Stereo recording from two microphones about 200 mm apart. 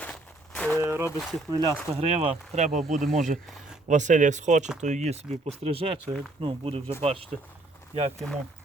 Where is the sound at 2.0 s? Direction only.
35° right (ahead or behind).